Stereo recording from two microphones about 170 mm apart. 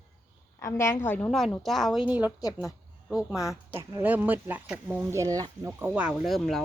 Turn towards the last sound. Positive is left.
turn(degrees=0)  # may be behind; listen again after turning